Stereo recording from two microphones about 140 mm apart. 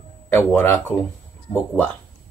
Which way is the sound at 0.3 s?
15° left (ahead or behind).